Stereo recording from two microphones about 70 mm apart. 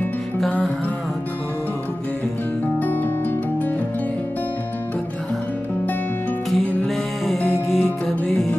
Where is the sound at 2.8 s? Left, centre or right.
Left.